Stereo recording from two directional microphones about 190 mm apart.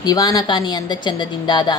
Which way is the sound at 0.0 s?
20° left (ahead or behind).